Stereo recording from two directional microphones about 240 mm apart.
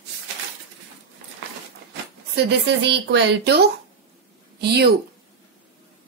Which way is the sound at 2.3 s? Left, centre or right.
Right.